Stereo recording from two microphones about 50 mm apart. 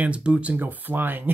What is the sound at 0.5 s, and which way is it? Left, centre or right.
Speech, right.